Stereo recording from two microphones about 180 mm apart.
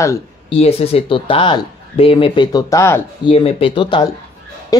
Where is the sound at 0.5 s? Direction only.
35° left (ahead or behind); by 3.0 s 15° left (ahead or behind).